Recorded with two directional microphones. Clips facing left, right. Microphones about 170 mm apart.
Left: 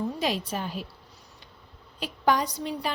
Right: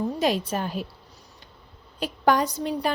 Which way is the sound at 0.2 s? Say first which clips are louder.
Right 5 dB; 50° right (ahead or behind).